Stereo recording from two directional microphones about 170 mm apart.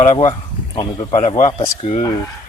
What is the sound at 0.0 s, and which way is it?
Speech, 45° left (ahead or behind).